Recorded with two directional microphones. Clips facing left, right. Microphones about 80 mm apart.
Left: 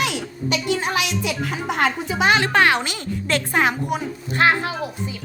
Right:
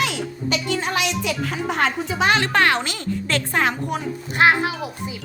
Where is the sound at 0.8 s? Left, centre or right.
Centre.